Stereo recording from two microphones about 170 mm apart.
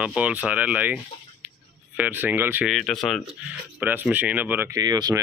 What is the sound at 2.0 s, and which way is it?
Speech, 10° right (ahead or behind).